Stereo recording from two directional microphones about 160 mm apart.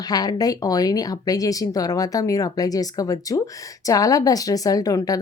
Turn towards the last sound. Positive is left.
turn(degrees=20)  # may be behind; listen again after turning